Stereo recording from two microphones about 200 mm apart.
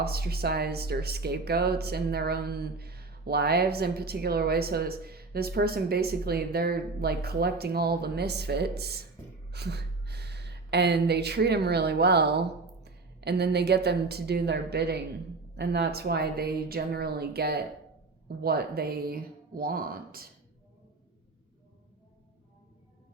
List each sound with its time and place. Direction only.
0.0 s speech: 50° right (ahead or behind)